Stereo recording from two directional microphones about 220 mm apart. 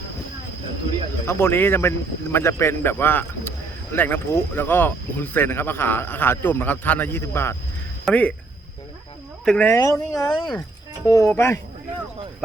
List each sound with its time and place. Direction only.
1.2 s speech: 10° left (ahead or behind)
9.4 s speech: 5° left (ahead or behind)